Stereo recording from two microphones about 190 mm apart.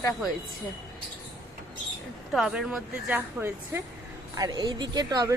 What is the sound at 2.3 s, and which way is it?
Speech, 5° right (ahead or behind).